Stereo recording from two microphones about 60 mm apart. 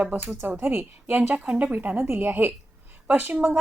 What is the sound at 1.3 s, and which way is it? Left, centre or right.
A woman's voice, right.